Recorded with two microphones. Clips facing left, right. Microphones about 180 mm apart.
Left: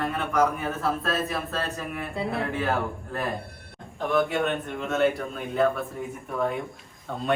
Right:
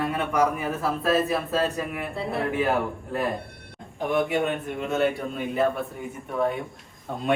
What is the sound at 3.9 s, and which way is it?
Speech, 15° right (ahead or behind).